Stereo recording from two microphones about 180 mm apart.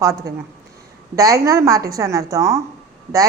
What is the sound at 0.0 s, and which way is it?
A woman's voice, 20° right (ahead or behind).